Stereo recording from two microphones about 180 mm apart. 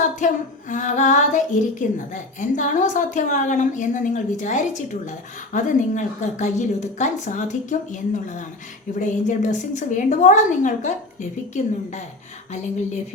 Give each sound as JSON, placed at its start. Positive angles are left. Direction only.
{"t": 0.2, "sound": "a woman's voice", "side_deg": 45}